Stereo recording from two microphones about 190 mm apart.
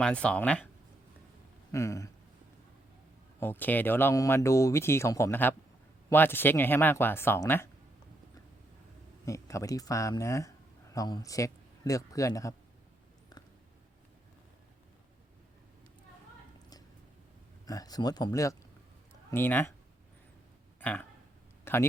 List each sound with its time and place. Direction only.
0.0 s speech: 5° left (ahead or behind)
1.7 s speech: 15° left (ahead or behind)
3.4 s speech: 10° left (ahead or behind)
9.2 s speech: 15° left (ahead or behind)
17.7 s speech: 20° left (ahead or behind)
20.8 s speech: 10° left (ahead or behind)
21.6 s a sound: 10° left (ahead or behind)